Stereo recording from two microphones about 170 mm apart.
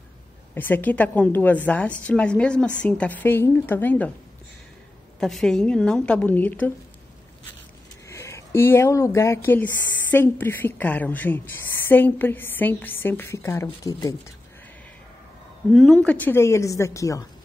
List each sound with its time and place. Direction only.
0.6 s a woman's voice: 10° left (ahead or behind)
5.2 s a woman's voice: centre (ahead or behind)
8.1 s a woman's voice: 15° left (ahead or behind)
15.7 s a woman's voice: centre (ahead or behind); by 17.3 s 20° left (ahead or behind)